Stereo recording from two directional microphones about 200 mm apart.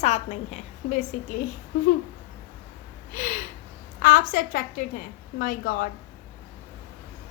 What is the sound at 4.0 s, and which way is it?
A woman's voice, 45° left (ahead or behind).